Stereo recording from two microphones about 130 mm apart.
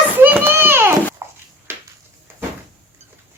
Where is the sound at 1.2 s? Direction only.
20° right (ahead or behind).